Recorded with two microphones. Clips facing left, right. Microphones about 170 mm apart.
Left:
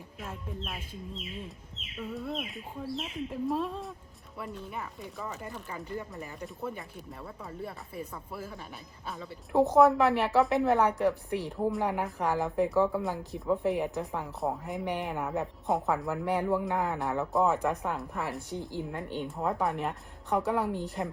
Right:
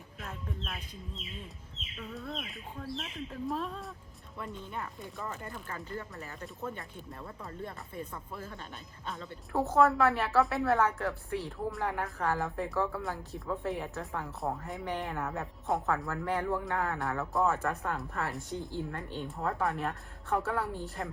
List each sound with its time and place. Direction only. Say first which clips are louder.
2.0 s speech: left 5 dB; 5° left (ahead or behind)
5.6 s speech: left 3 dB; 15° left (ahead or behind)
6.7 s speech: left 1 dB; centre (ahead or behind)
9.5 s speech: left 5 dB; 15° left (ahead or behind)